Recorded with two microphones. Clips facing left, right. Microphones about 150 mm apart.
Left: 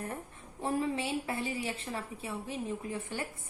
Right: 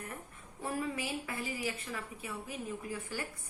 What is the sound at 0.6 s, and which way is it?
A woman's voice, 25° left (ahead or behind).